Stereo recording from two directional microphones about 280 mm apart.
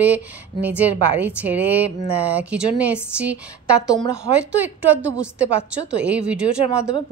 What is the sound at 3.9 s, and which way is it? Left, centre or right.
Speech, centre.